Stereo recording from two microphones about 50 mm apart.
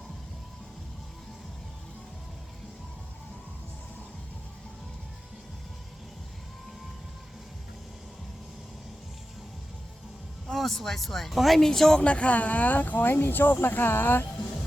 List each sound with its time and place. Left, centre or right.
10.4 s speech: centre
12.0 s speech: left